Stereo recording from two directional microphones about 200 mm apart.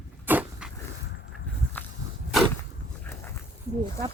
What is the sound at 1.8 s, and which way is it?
Walk, 10° left (ahead or behind).